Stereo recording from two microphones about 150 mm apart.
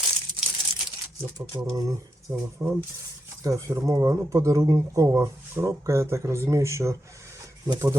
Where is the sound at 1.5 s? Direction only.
30° right (ahead or behind).